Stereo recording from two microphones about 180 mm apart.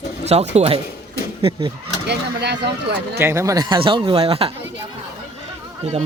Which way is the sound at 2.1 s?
70° right (ahead or behind).